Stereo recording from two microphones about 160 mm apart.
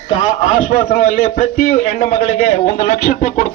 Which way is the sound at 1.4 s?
45° left (ahead or behind).